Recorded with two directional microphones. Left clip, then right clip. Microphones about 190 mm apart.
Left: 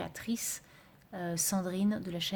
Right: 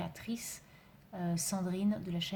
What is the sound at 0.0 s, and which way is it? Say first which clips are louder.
A woman's voice: left 4 dB; 40° left (ahead or behind).